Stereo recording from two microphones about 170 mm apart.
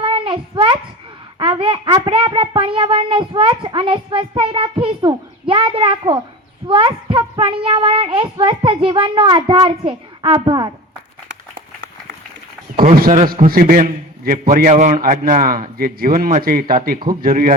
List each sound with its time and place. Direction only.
0.0 s a sound: 30° right (ahead or behind)
1.4 s speech: 30° right (ahead or behind)
12.8 s speech: 55° right (ahead or behind)